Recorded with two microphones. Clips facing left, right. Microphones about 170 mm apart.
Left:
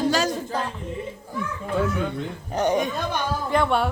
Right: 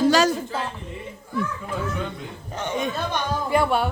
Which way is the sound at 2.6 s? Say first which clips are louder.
Left 8 dB; 35° left (ahead or behind).